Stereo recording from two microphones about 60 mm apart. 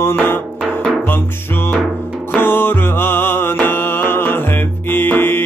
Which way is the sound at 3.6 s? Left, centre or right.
Left.